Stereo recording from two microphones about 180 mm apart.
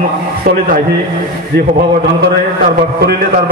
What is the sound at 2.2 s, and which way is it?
Speech, 60° right (ahead or behind).